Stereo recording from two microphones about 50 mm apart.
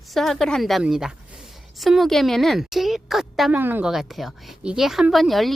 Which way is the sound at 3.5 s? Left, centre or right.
Right.